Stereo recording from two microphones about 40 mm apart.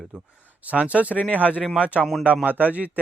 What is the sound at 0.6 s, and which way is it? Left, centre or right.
Speech, right.